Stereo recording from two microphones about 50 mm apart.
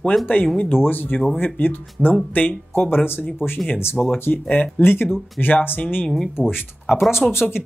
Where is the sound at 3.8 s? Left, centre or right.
Left.